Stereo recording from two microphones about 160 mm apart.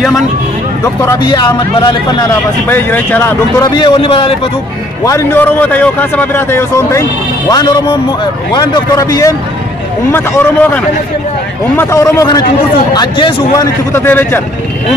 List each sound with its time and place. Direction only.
0.8 s speech: 20° left (ahead or behind)
2.7 s a man's voice: 10° left (ahead or behind)
3.7 s a man's voice: 30° left (ahead or behind)
5.0 s a man's voice: 15° left (ahead or behind)
10.1 s a man's voice: 10° left (ahead or behind); by 13.7 s 25° left (ahead or behind)
13.9 s a man's voice: 15° left (ahead or behind)